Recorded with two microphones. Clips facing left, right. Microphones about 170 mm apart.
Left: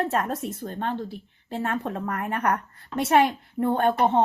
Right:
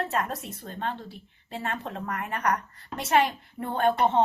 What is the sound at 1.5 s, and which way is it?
Speech, 45° left (ahead or behind).